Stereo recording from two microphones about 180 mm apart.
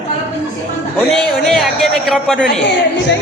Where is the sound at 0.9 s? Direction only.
Centre (ahead or behind).